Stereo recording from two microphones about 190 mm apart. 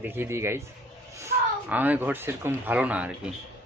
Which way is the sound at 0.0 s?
10° right (ahead or behind).